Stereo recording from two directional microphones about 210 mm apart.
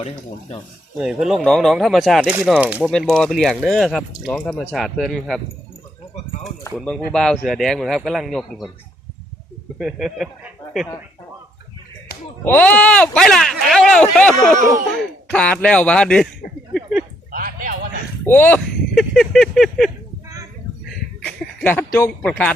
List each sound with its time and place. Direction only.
0.0 s speech: 30° left (ahead or behind)
0.9 s speech: 5° right (ahead or behind)
6.7 s speech: 5° left (ahead or behind)
9.7 s speech: centre (ahead or behind)
12.5 s speech: 5° left (ahead or behind)
17.3 s a sound: 40° right (ahead or behind)
18.3 s speech: 10° left (ahead or behind)
21.2 s speech: 5° left (ahead or behind)